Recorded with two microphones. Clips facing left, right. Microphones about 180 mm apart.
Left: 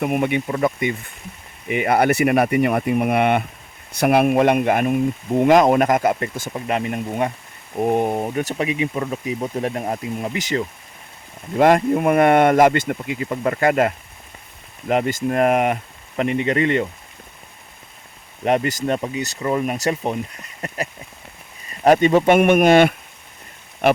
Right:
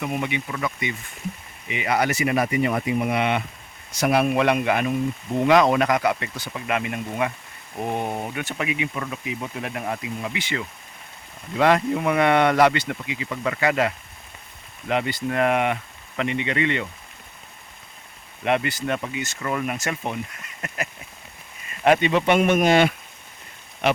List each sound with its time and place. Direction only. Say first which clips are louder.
0.0 s speech: left 7 dB; 55° left (ahead or behind)
8.1 s speech: left 6 dB; 30° left (ahead or behind)
18.4 s speech: left 4 dB; 40° left (ahead or behind)